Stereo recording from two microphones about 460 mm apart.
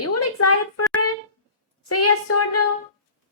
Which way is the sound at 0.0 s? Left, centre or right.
Left.